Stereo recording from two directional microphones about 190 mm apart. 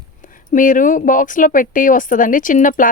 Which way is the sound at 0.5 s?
45° left (ahead or behind).